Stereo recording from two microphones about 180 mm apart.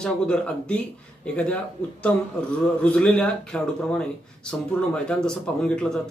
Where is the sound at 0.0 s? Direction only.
5° left (ahead or behind).